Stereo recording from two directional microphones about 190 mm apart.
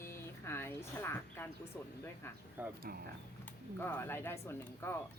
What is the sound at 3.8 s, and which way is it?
Speech, 10° left (ahead or behind).